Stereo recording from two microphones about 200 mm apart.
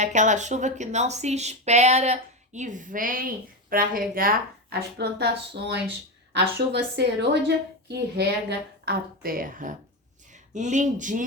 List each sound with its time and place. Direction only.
0.0 s a woman's voice: 35° right (ahead or behind)